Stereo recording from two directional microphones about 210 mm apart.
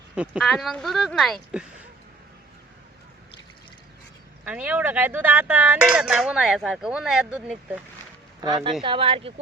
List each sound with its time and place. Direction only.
0.2 s speech: centre (ahead or behind)
4.4 s speech: 5° right (ahead or behind)
8.4 s speech: 20° right (ahead or behind)